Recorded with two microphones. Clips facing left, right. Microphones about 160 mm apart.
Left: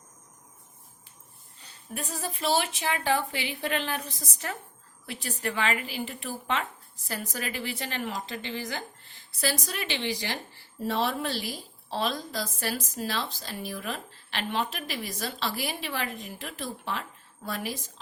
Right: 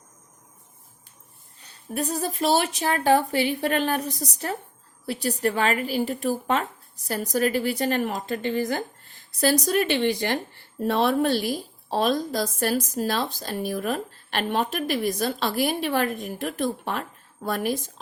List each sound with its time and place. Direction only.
1.9 s a woman's voice: 40° right (ahead or behind)